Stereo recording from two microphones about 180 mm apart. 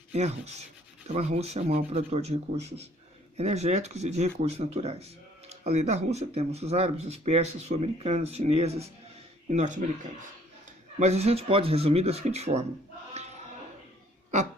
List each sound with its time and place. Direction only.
0.1 s speech: 35° right (ahead or behind)